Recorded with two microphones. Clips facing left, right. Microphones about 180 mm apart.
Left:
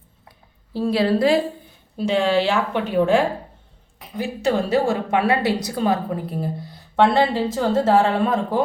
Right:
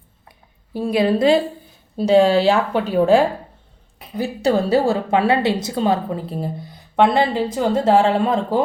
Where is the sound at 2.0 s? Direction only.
35° right (ahead or behind).